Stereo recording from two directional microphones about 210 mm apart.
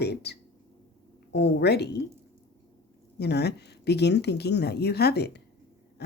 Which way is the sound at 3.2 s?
50° left (ahead or behind).